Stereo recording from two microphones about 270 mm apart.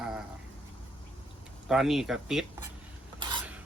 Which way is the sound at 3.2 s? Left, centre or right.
Centre.